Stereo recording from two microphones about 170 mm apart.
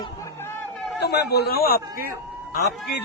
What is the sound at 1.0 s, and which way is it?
A man's voice, 75° left (ahead or behind).